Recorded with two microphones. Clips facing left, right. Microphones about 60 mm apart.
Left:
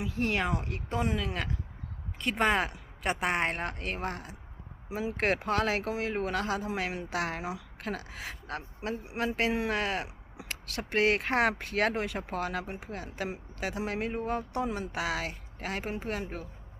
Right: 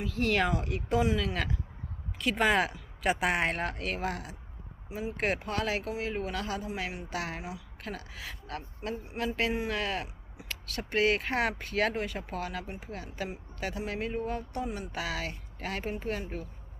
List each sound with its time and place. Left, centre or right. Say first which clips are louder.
0.0 s speech: right 2 dB; centre
0.4 s speech: right 2 dB; centre
4.9 s speech: left 2 dB; left